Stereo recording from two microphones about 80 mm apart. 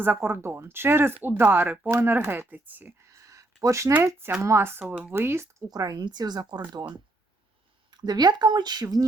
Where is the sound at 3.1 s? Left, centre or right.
Right.